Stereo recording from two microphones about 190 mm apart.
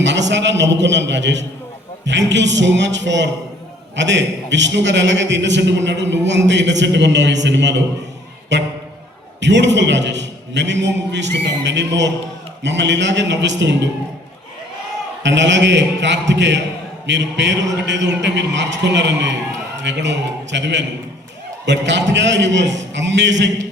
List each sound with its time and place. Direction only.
0.0 s a man's voice: 70° right (ahead or behind)
15.2 s a man's voice: 70° right (ahead or behind)